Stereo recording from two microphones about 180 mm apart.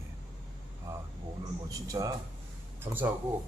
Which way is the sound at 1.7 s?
20° right (ahead or behind).